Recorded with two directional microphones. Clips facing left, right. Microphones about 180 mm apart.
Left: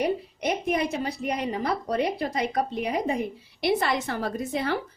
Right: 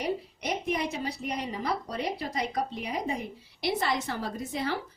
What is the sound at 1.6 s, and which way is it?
Speech, 55° left (ahead or behind).